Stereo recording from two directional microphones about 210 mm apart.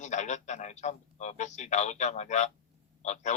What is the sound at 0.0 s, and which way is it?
Speech, 35° left (ahead or behind).